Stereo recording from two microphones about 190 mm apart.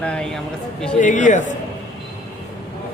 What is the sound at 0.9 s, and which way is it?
Speech, 40° left (ahead or behind).